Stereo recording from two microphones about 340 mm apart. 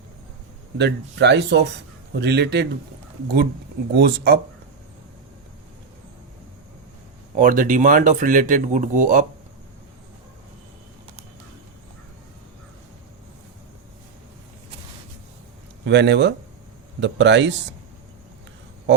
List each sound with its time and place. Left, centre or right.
0.8 s speech: right
3.9 s speech: right
7.3 s speech: right
15.8 s speech: right